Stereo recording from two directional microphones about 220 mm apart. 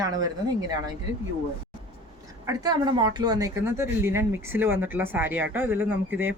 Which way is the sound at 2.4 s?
20° right (ahead or behind).